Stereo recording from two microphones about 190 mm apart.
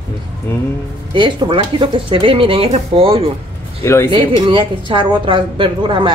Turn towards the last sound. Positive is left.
turn(degrees=-25)  # may be behind; listen again after turning